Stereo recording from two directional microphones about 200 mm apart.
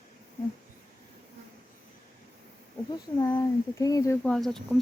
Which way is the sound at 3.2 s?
20° left (ahead or behind).